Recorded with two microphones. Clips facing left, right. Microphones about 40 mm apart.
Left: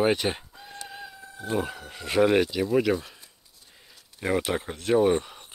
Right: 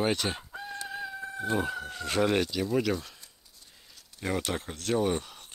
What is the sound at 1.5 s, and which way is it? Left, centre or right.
Speech, centre.